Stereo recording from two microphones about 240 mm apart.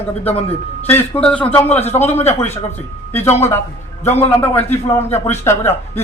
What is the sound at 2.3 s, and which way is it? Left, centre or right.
Speech, centre.